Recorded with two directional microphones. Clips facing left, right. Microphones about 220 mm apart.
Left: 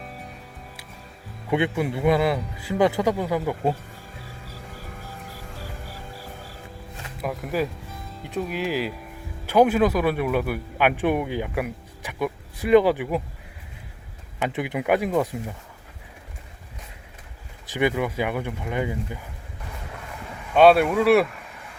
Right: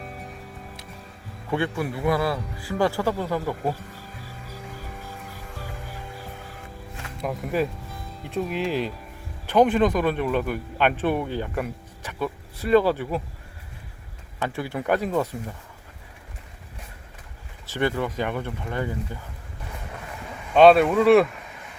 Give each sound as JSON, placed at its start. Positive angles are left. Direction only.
{"t": 1.5, "sound": "a man's voice", "side_deg": 20}
{"t": 7.2, "sound": "a man's voice", "side_deg": 0}
{"t": 14.3, "sound": "a man's voice", "side_deg": 20}
{"t": 17.7, "sound": "a man's voice", "side_deg": 15}
{"t": 20.5, "sound": "speech", "side_deg": 5}